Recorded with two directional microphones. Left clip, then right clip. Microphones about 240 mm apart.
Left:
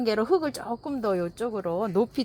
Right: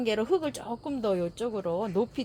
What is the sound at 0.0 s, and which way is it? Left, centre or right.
Speech, left.